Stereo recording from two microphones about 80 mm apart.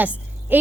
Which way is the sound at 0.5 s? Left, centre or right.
Right.